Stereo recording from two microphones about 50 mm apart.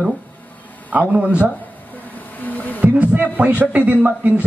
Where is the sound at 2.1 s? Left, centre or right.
Left.